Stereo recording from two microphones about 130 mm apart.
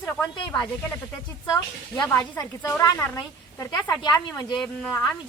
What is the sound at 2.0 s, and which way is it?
Speech, 10° left (ahead or behind).